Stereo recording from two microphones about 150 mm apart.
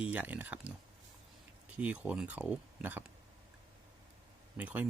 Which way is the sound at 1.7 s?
10° right (ahead or behind).